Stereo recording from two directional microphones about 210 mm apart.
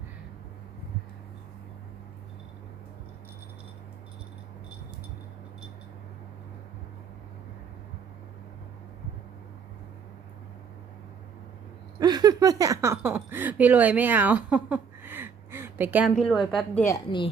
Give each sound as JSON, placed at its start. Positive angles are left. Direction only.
{"t": 11.9, "sound": "speech", "side_deg": -20}
{"t": 16.8, "sound": "a woman's voice", "side_deg": 20}